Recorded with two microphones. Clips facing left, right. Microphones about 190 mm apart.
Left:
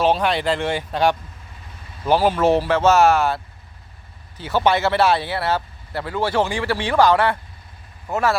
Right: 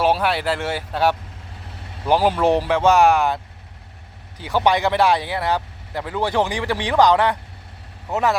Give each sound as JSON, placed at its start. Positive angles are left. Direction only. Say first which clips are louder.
{"t": 0.0, "sound": "speech", "louder": "left 1 dB", "side_deg": -10}